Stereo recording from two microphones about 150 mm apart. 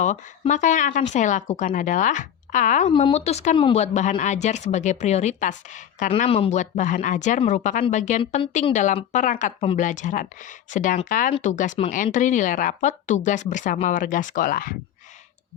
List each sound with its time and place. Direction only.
0.0 s speech: 55° left (ahead or behind)
2.9 s a woman's voice: 45° left (ahead or behind)
6.2 s speech: 40° left (ahead or behind); by 14.8 s 70° left (ahead or behind)